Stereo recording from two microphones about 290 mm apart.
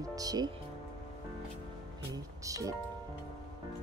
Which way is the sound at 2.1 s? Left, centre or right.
Centre.